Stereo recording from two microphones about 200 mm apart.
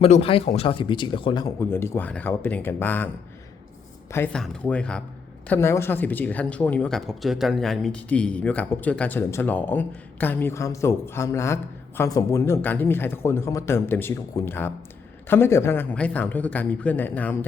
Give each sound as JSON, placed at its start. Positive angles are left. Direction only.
{"t": 0.0, "sound": "speech", "side_deg": 30}
{"t": 4.1, "sound": "speech", "side_deg": 5}